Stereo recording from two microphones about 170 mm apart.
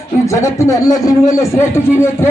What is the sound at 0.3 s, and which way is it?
Speech, 15° left (ahead or behind).